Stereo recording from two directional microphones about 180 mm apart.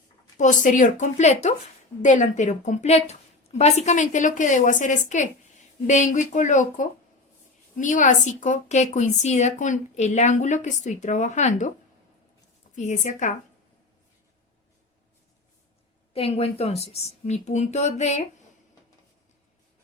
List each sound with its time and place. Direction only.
0.3 s a woman's voice: 45° left (ahead or behind)
12.7 s a woman's voice: 45° left (ahead or behind)
16.1 s a woman's voice: 35° left (ahead or behind)